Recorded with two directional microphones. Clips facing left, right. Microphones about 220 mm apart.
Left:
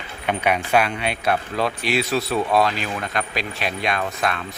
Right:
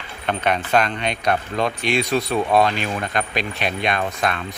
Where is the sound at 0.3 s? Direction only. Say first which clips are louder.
Even; 10° left (ahead or behind).